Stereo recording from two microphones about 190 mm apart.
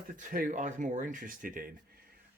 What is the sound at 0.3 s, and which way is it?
Speech, 45° right (ahead or behind).